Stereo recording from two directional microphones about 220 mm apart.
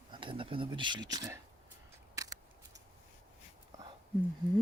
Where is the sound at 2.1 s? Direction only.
15° right (ahead or behind).